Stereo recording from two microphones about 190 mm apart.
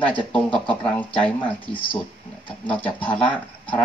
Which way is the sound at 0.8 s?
5° left (ahead or behind).